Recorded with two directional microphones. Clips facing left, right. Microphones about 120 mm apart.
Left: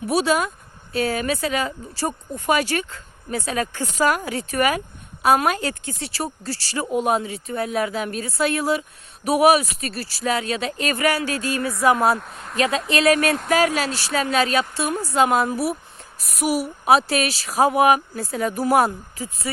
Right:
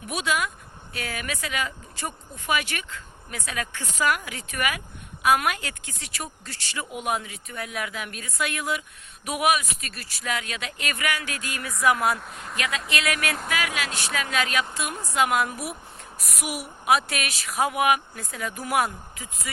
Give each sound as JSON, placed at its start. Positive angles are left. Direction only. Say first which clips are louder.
{"t": 0.1, "sound": "speech", "louder": "left 7 dB", "side_deg": 35}
{"t": 12.2, "sound": "speech", "louder": "left 1 dB", "side_deg": 0}
{"t": 12.5, "sound": "speech", "louder": "left 9 dB", "side_deg": 30}